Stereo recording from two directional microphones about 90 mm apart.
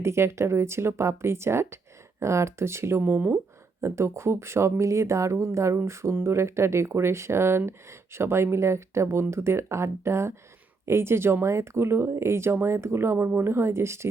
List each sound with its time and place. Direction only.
0.0 s speech: 30° right (ahead or behind)